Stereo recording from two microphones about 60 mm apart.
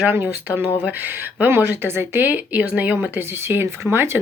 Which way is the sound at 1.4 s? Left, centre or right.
Right.